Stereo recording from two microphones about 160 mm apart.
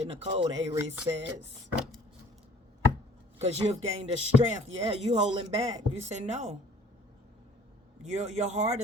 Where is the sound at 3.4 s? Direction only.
40° right (ahead or behind).